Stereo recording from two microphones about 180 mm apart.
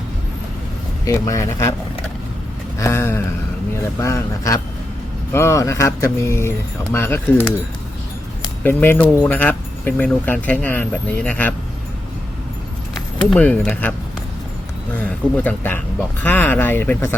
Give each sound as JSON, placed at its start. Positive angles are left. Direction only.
{"t": 1.0, "sound": "speech", "side_deg": 15}
{"t": 2.7, "sound": "a sound", "side_deg": 15}
{"t": 4.0, "sound": "speech", "side_deg": 15}
{"t": 8.6, "sound": "speech", "side_deg": 10}
{"t": 13.3, "sound": "speech", "side_deg": 5}
{"t": 14.9, "sound": "speech", "side_deg": 10}